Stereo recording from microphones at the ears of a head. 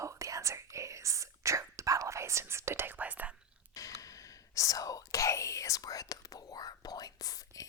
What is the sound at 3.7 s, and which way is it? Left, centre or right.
Whispering, left.